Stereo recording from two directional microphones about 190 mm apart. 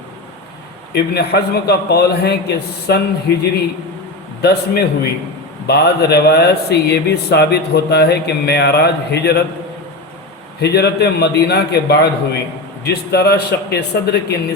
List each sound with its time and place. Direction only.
0.9 s a man's voice: 60° left (ahead or behind)
10.6 s a man's voice: 60° left (ahead or behind)